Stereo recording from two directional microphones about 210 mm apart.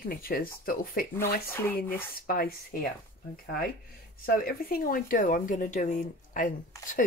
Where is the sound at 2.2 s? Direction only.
45° left (ahead or behind).